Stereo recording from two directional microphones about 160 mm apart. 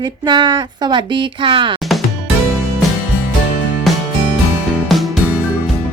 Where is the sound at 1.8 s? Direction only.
Centre (ahead or behind).